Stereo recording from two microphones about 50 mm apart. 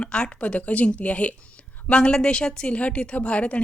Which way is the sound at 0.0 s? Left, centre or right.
Left.